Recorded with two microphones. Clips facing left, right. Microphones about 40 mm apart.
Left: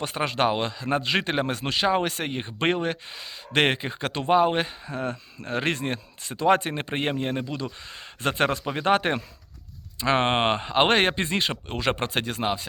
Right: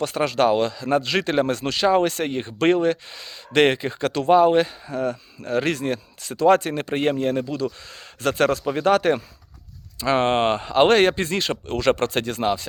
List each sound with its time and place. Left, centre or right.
0.0 s a man's voice: left
7.4 s a man's voice: left; by 12.6 s centre